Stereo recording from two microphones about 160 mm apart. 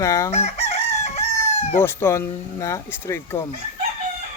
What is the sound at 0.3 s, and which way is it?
Chicken, 45° left (ahead or behind).